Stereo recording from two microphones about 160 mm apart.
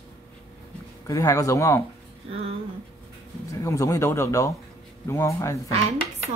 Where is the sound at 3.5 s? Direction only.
20° left (ahead or behind).